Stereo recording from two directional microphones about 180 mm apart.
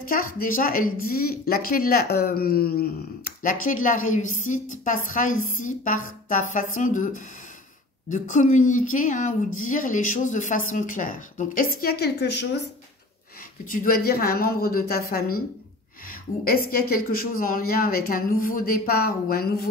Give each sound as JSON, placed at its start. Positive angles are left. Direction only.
{"t": 0.1, "sound": "a woman's voice", "side_deg": 50}
{"t": 13.7, "sound": "a woman's voice", "side_deg": 50}